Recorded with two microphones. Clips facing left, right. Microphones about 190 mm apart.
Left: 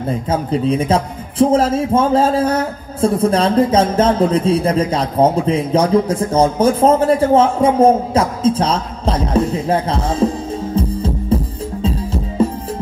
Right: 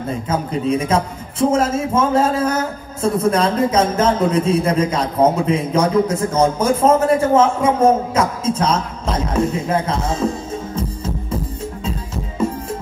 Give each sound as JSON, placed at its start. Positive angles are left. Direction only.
{"t": 0.3, "sound": "speech", "side_deg": 30}
{"t": 10.8, "sound": "music", "side_deg": 30}